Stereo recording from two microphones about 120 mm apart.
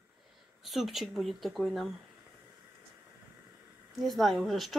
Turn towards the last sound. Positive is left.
turn(degrees=0)  # may be behind; listen again after turning